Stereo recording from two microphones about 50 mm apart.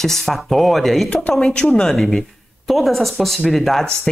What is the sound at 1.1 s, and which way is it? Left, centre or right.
Speech, centre.